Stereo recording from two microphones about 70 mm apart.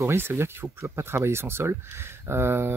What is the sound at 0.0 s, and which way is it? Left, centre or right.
Speech, right.